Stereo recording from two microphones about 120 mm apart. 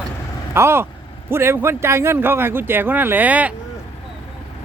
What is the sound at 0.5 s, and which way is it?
Speech, 20° right (ahead or behind).